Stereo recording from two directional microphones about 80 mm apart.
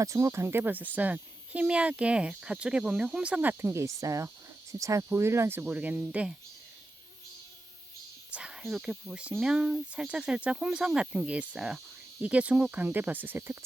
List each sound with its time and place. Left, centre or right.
0.0 s speech: right; by 3.4 s centre
3.4 s cricket: right
6.0 s speech: centre
8.3 s a sound: centre
8.6 s speech: centre
12.7 s cricket: right